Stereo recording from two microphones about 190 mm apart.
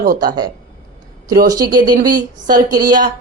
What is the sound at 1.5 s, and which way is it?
A woman's voice, 20° right (ahead or behind).